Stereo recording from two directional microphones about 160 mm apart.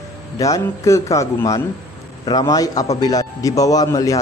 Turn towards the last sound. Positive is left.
turn(degrees=20)  # may be behind; listen again after turning